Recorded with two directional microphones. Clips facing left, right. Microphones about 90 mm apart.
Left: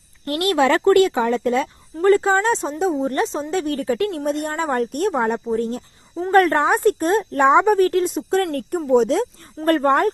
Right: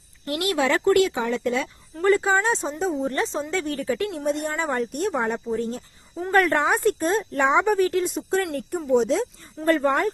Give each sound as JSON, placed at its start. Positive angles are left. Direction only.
{"t": 0.3, "sound": "a woman's voice", "side_deg": 50}
{"t": 2.5, "sound": "speech", "side_deg": 0}
{"t": 3.0, "sound": "speech", "side_deg": 30}
{"t": 3.9, "sound": "a woman's voice", "side_deg": 50}
{"t": 5.1, "sound": "a woman's voice", "side_deg": 40}